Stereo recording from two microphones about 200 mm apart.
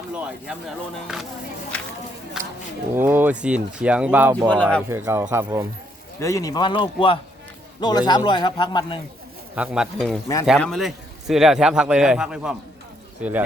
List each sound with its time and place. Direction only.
1.0 s a man's voice: centre (ahead or behind)
2.9 s speech: 10° right (ahead or behind)
4.4 s speech: 5° left (ahead or behind)
4.9 s speech: 15° right (ahead or behind)
6.1 s a man's voice: 15° left (ahead or behind)
9.6 s a man's voice: 5° right (ahead or behind)